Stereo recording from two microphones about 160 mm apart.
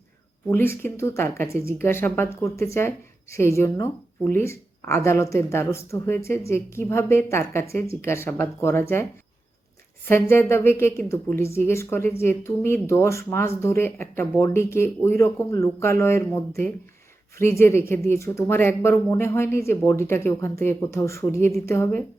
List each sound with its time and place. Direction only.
0.5 s speech: 15° left (ahead or behind)
10.1 s speech: 15° left (ahead or behind)